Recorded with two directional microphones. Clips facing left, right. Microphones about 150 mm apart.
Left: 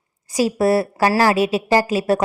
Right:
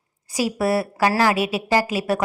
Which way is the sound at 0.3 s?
40° left (ahead or behind).